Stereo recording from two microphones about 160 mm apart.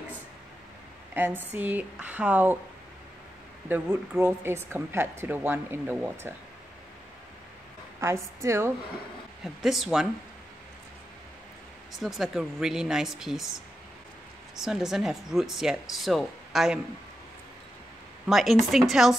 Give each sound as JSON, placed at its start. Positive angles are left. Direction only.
{"t": 1.1, "sound": "speech", "side_deg": -15}
{"t": 3.6, "sound": "speech", "side_deg": -10}
{"t": 8.0, "sound": "speech", "side_deg": -15}
{"t": 9.4, "sound": "speech", "side_deg": 0}
{"t": 12.0, "sound": "speech", "side_deg": 0}
{"t": 14.6, "sound": "speech", "side_deg": -5}
{"t": 18.2, "sound": "speech", "side_deg": 0}